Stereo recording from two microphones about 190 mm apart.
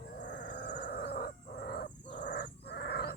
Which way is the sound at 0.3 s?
60° left (ahead or behind).